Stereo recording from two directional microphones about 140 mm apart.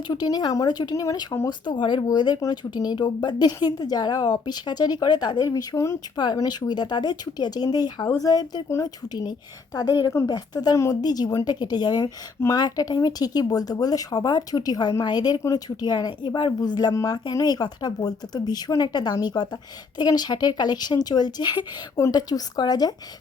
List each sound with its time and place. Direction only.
0.1 s speech: 30° left (ahead or behind)